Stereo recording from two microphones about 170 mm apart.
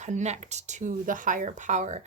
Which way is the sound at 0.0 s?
45° right (ahead or behind).